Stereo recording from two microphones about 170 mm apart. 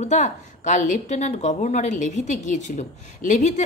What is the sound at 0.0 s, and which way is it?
A woman's voice, 45° left (ahead or behind).